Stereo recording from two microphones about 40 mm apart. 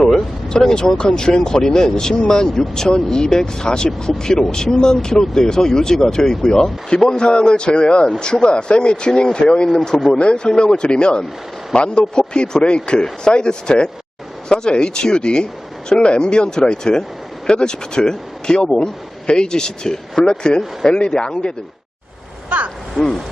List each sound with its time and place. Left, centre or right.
0.0 s speech: centre
22.4 s vehicle: right